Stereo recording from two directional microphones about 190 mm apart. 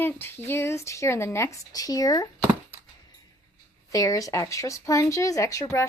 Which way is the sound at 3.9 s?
15° left (ahead or behind).